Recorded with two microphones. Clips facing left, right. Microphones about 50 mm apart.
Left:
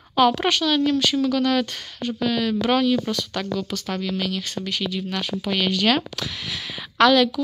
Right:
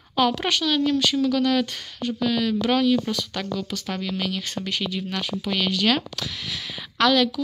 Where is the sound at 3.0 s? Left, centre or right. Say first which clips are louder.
Left 2 dB; centre.